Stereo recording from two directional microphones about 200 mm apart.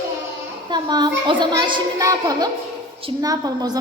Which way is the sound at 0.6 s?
20° right (ahead or behind).